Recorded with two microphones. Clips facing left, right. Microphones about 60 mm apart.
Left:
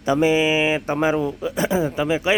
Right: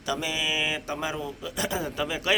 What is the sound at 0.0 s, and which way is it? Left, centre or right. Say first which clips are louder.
Speech: left 12 dB; left.